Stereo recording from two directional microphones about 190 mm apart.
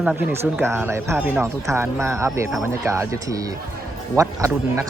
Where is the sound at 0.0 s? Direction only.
5° right (ahead or behind).